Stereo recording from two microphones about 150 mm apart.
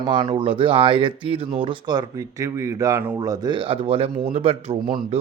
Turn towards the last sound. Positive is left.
turn(degrees=-35)  # may be behind; listen again after turning